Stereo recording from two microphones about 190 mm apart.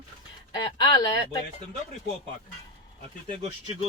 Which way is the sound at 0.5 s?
25° left (ahead or behind).